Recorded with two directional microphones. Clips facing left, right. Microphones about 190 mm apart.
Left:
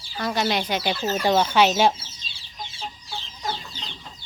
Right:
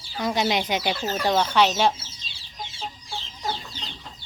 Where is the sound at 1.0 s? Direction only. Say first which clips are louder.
Left 4 dB; 5° left (ahead or behind).